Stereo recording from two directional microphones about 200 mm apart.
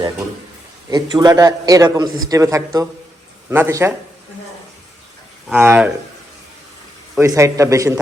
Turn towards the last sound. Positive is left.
turn(degrees=-15)  # may be behind; listen again after turning